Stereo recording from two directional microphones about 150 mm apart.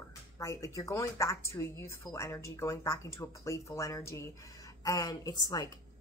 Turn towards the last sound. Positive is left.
turn(degrees=25)  # may be behind; listen again after turning